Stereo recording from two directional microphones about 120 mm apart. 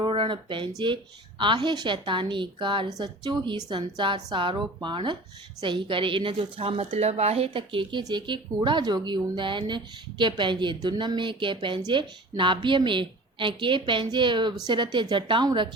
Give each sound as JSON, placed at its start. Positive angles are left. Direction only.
{"t": 0.0, "sound": "a woman's voice", "side_deg": -45}